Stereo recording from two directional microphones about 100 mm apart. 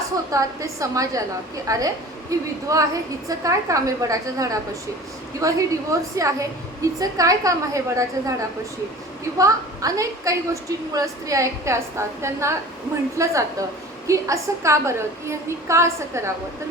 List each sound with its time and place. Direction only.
0.3 s a woman's voice: 35° right (ahead or behind)